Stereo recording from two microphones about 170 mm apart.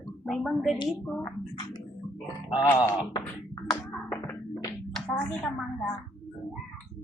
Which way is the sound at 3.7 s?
10° left (ahead or behind).